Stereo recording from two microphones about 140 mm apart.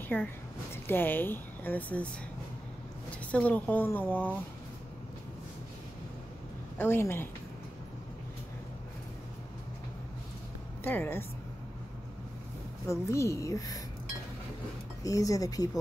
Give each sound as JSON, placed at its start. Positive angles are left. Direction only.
{"t": 0.1, "sound": "a woman's voice", "side_deg": 15}
{"t": 3.3, "sound": "a woman's voice", "side_deg": 10}
{"t": 6.8, "sound": "a woman's voice", "side_deg": 15}
{"t": 10.8, "sound": "a woman's voice", "side_deg": 15}
{"t": 12.8, "sound": "speech", "side_deg": 20}
{"t": 15.0, "sound": "speech", "side_deg": 25}